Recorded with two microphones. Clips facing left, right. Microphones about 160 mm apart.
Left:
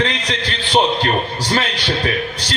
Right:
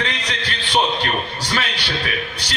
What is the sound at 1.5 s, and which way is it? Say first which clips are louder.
Speech: left 5 dB; 40° left (ahead or behind).